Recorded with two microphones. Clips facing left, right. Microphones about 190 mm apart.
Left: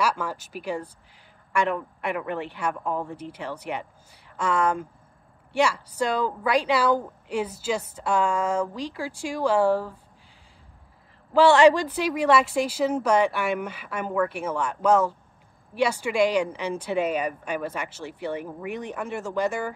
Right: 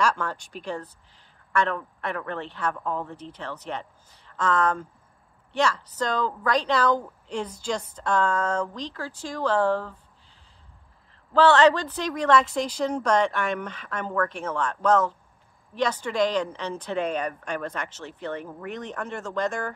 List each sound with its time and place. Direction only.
0.0 s speech: 10° left (ahead or behind)
11.3 s speech: 10° left (ahead or behind)